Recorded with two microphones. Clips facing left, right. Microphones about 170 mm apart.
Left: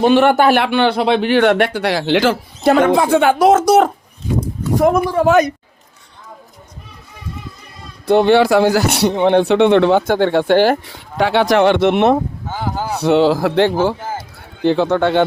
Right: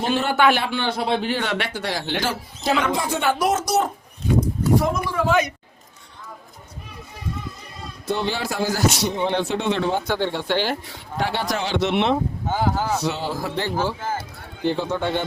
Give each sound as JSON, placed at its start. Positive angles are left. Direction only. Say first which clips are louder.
{"t": 0.1, "sound": "speech", "louder": "left 8 dB", "side_deg": 65}
{"t": 4.8, "sound": "speech", "louder": "left 10 dB", "side_deg": 60}
{"t": 5.1, "sound": "speech", "louder": "left 8 dB", "side_deg": 45}
{"t": 8.0, "sound": "speech", "louder": "left 14 dB", "side_deg": 65}
{"t": 11.2, "sound": "speech", "louder": "left 12 dB", "side_deg": 75}
{"t": 13.0, "sound": "speech", "louder": "left 13 dB", "side_deg": 65}
{"t": 14.6, "sound": "speech", "louder": "left 9 dB", "side_deg": 85}